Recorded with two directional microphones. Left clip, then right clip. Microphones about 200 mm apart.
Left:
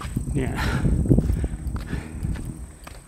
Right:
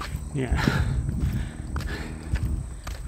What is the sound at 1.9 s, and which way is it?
Walk, 5° left (ahead or behind).